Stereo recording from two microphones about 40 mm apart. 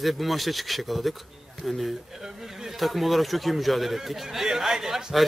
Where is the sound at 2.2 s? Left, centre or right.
Centre.